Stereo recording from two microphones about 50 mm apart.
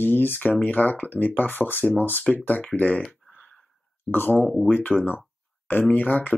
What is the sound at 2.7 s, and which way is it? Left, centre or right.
Speech, left.